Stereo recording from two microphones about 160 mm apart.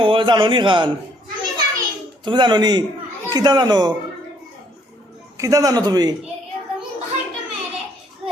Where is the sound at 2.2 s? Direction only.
30° right (ahead or behind).